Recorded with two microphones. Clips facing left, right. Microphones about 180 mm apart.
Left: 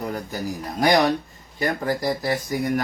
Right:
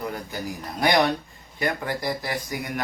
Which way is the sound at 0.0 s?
40° left (ahead or behind).